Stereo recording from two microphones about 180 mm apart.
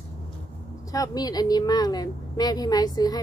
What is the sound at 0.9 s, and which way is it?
A woman's voice, 20° left (ahead or behind).